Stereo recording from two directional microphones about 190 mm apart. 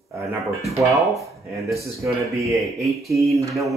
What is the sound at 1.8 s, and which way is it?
Speech, 15° right (ahead or behind).